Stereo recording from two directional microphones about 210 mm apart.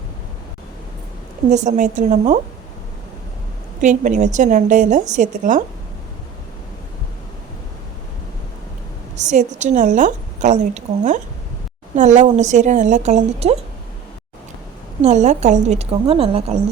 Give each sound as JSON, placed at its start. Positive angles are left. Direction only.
{"t": 1.5, "sound": "a woman's voice", "side_deg": -35}
{"t": 3.8, "sound": "a woman's voice", "side_deg": -35}
{"t": 9.1, "sound": "a woman's voice", "side_deg": -35}
{"t": 15.0, "sound": "a woman's voice", "side_deg": -35}